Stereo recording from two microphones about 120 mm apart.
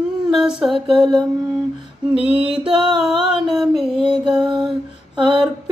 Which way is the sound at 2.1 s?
10° right (ahead or behind).